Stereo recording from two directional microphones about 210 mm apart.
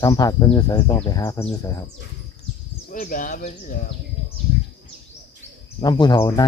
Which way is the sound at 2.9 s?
40° left (ahead or behind).